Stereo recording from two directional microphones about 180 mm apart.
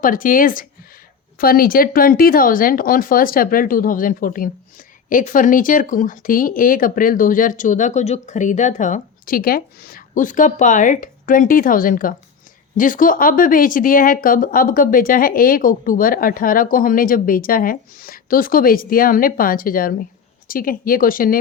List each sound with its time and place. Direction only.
0.0 s speech: 50° left (ahead or behind)